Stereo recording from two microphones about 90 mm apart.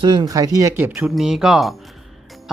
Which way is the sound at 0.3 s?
40° right (ahead or behind).